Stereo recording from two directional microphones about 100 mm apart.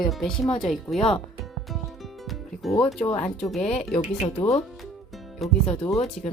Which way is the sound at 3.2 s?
5° left (ahead or behind).